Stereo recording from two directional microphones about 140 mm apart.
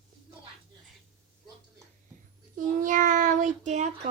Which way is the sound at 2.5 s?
65° right (ahead or behind).